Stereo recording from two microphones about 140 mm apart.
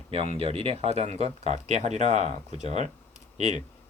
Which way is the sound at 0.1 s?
45° right (ahead or behind).